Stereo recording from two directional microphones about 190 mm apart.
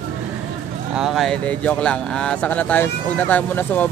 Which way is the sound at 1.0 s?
Centre (ahead or behind).